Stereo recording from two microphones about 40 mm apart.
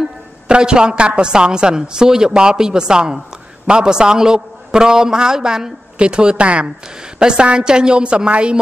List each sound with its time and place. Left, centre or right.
0.5 s a man's voice: right